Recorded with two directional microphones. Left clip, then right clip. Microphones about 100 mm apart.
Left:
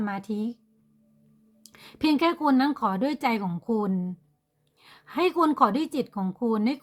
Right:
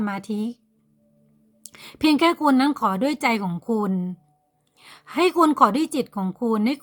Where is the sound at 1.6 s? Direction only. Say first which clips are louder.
Right 5 dB; 30° right (ahead or behind).